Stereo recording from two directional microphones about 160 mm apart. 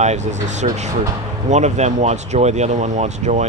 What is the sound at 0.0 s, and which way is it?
Speech, 45° right (ahead or behind).